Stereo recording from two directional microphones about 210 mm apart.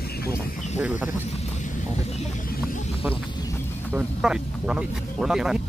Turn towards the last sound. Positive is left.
turn(degrees=-5)  # may be behind; listen again after turning